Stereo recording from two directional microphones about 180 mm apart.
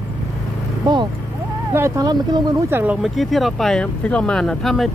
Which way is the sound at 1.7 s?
15° right (ahead or behind).